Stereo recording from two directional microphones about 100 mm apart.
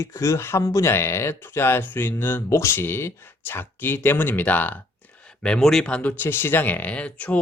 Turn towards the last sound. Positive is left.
turn(degrees=15)  # may be behind; listen again after turning